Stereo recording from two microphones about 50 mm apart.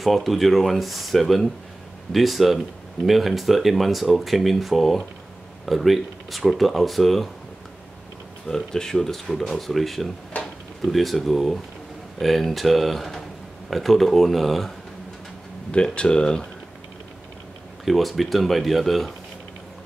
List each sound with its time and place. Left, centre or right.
0.0 s speech: centre
8.5 s speech: centre
15.7 s speech: centre
17.8 s speech: centre